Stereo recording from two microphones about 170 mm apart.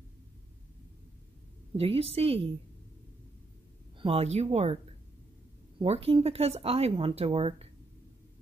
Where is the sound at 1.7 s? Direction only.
35° right (ahead or behind).